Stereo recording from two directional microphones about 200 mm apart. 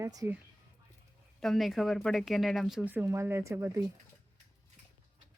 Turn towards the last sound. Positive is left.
turn(degrees=-15)  # may be behind; listen again after turning